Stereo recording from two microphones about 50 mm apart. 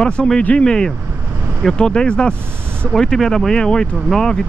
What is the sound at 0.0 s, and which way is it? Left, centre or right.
Speech, centre.